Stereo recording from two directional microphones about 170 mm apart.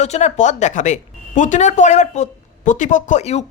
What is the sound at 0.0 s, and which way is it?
Speech, 40° left (ahead or behind).